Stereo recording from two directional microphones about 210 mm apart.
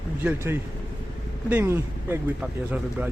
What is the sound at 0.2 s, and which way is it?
Speech, 10° right (ahead or behind).